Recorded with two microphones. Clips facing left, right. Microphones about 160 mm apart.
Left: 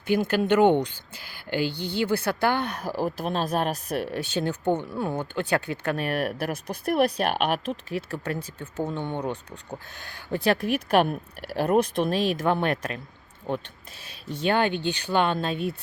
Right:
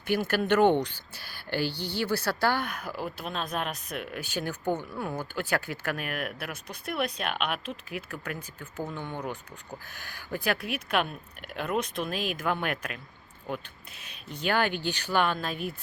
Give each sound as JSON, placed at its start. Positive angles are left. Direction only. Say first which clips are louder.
{"t": 0.1, "sound": "speech", "louder": "left 4 dB", "side_deg": 15}
{"t": 8.7, "sound": "speech", "louder": "left 6 dB", "side_deg": 25}
{"t": 10.3, "sound": "speech", "louder": "left 7 dB", "side_deg": 30}